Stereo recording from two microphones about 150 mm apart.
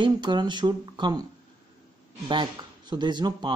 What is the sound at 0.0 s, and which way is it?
Speech, 30° right (ahead or behind).